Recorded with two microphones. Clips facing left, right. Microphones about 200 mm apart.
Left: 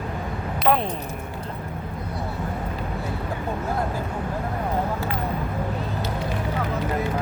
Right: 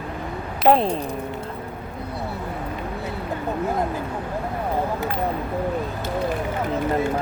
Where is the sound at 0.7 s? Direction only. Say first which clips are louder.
Right 5 dB; 30° right (ahead or behind).